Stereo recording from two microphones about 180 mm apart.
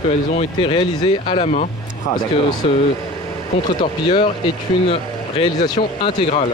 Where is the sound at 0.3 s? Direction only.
30° left (ahead or behind).